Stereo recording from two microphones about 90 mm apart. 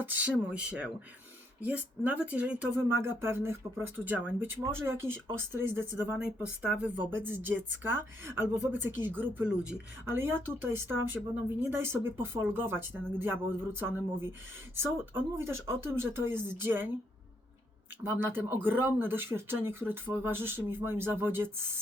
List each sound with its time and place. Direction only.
0.0 s a woman's voice: 15° right (ahead or behind)
3.0 s speech: 25° right (ahead or behind); by 6.9 s 10° right (ahead or behind)
7.2 s speech: 20° right (ahead or behind)
10.1 s speech: 25° right (ahead or behind)
18.0 s speech: 20° right (ahead or behind)